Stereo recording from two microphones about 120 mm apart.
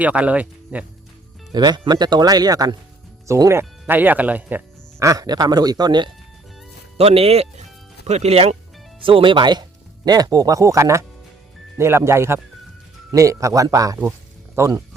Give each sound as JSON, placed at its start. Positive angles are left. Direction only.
{"t": 0.0, "sound": "speech", "side_deg": -10}
{"t": 1.5, "sound": "speech", "side_deg": -35}
{"t": 4.9, "sound": "speech", "side_deg": -30}
{"t": 6.9, "sound": "speech", "side_deg": -55}
{"t": 9.0, "sound": "speech", "side_deg": -45}